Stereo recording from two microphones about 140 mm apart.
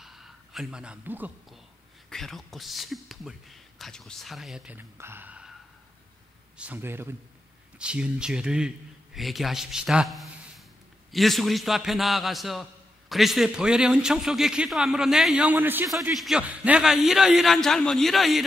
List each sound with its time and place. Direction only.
0.0 s a sound: centre (ahead or behind)
2.0 s a man's voice: 5° left (ahead or behind)
4.7 s speech: 15° right (ahead or behind)
6.6 s a man's voice: 15° right (ahead or behind)
15.9 s a man's voice: centre (ahead or behind)